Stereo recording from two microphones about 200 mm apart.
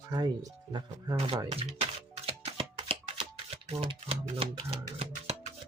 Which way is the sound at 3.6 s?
25° right (ahead or behind).